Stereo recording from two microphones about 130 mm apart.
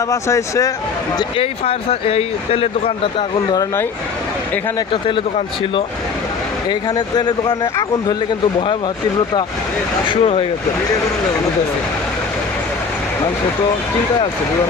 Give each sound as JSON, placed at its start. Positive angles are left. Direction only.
{"t": 0.1, "sound": "speech", "side_deg": 25}
{"t": 1.4, "sound": "speech", "side_deg": 45}
{"t": 6.7, "sound": "speech", "side_deg": 35}
{"t": 10.1, "sound": "speech", "side_deg": 45}